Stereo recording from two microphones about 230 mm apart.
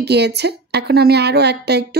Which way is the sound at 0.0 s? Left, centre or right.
Right.